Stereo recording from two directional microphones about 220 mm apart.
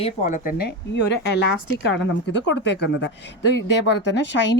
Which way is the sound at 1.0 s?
50° left (ahead or behind).